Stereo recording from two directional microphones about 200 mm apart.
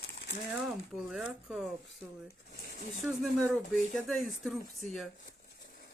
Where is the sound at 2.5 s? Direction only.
50° left (ahead or behind).